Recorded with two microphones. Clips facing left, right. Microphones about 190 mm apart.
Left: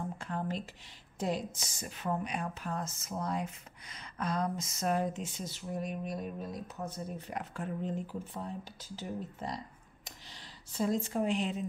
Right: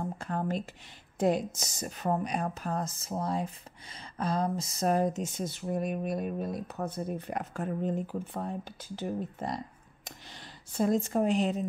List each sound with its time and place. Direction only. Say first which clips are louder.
0.2 s a woman's voice: right 4 dB; 45° right (ahead or behind)